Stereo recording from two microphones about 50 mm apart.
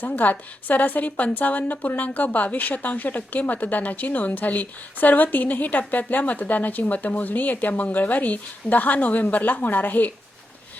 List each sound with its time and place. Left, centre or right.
0.0 s a woman's voice: left